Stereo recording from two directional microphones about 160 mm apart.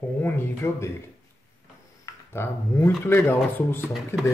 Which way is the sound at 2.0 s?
15° left (ahead or behind).